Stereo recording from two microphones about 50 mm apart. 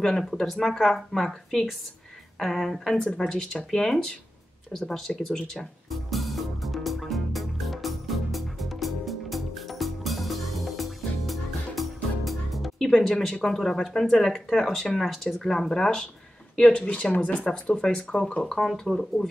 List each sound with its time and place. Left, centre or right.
0.3 s a woman's voice: centre
5.1 s music: centre
12.3 s speech: centre; by 17.5 s left
17.5 s speech: centre